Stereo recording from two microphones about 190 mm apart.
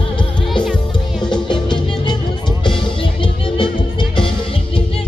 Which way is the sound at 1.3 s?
25° left (ahead or behind).